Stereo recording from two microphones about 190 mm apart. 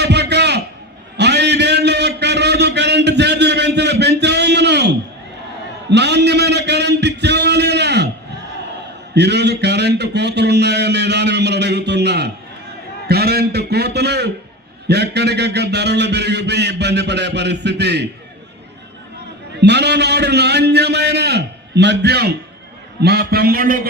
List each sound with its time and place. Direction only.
0.0 s a sound: 60° right (ahead or behind)
9.1 s a man's voice: 60° right (ahead or behind)
19.5 s a man's voice: 60° right (ahead or behind)